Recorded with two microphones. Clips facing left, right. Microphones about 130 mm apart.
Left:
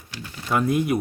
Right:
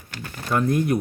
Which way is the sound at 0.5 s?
5° left (ahead or behind).